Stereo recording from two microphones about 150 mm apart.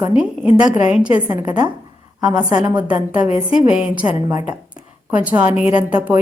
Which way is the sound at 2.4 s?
20° right (ahead or behind).